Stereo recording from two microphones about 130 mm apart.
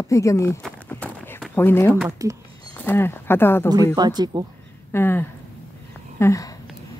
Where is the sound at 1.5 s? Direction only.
15° left (ahead or behind).